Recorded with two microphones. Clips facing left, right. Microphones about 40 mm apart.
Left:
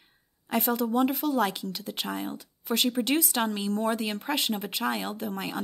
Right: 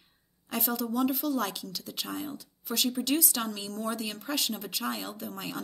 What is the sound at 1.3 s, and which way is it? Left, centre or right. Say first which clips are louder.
Speech: left 4 dB; left.